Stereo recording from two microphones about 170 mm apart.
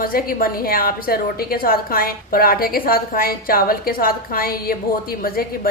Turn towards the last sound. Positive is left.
turn(degrees=60)  # may be behind; listen again after turning